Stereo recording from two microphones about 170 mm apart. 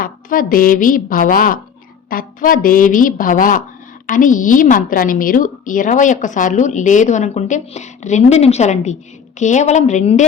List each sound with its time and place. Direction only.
0.0 s a woman's voice: 55° left (ahead or behind)